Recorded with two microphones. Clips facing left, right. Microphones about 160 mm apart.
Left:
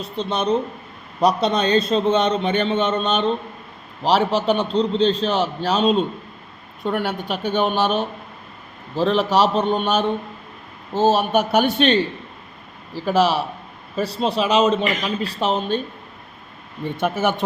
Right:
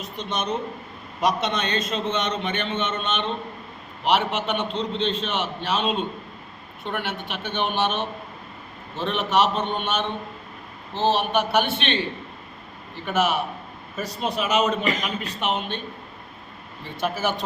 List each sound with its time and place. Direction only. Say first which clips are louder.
0.0 s a man's voice: left 6 dB; 30° left (ahead or behind)
17.0 s speech: left 4 dB; 55° left (ahead or behind)